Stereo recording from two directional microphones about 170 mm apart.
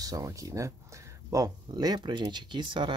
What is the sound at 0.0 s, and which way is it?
Speech, 20° right (ahead or behind).